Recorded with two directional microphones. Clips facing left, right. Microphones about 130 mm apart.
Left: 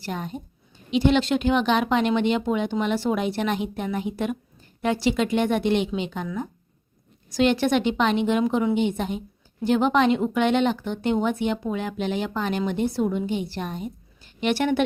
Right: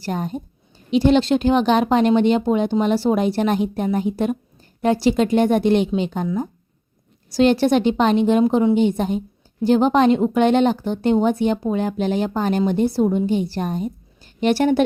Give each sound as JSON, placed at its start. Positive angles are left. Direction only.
{"t": 0.0, "sound": "a woman's voice", "side_deg": -40}
{"t": 7.3, "sound": "a woman's voice", "side_deg": -35}